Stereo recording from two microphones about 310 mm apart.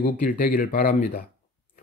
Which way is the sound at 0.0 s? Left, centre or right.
Left.